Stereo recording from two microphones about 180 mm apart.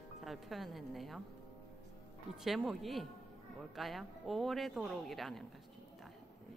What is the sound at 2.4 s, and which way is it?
Speech, centre (ahead or behind).